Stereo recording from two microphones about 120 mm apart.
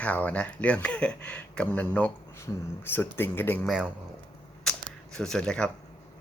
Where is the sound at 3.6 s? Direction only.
5° right (ahead or behind).